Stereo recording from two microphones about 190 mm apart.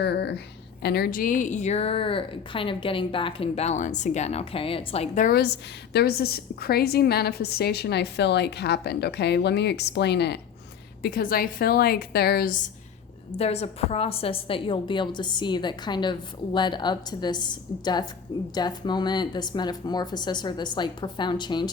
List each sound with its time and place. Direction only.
0.0 s speech: 60° left (ahead or behind)
11.0 s a woman's voice: 50° left (ahead or behind)
13.3 s a woman's voice: 35° left (ahead or behind)